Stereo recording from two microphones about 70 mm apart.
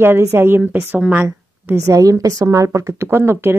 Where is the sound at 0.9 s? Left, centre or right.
Centre.